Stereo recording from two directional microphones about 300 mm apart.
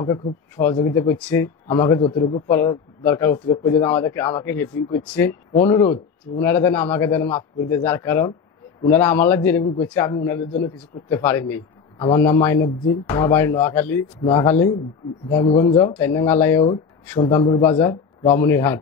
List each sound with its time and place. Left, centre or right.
0.0 s speech: centre